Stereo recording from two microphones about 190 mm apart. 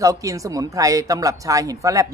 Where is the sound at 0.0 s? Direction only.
15° right (ahead or behind).